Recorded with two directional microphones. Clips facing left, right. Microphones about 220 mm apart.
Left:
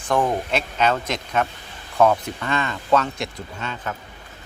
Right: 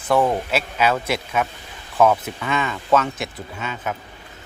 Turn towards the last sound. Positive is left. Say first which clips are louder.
# right 2 dB
turn(degrees=-5)  # may be behind; listen again after turning